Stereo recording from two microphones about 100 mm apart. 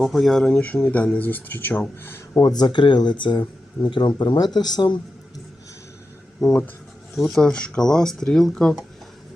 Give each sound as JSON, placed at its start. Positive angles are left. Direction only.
{"t": 0.0, "sound": "speech", "side_deg": 0}
{"t": 2.4, "sound": "speech", "side_deg": 45}
{"t": 7.2, "sound": "speech", "side_deg": 0}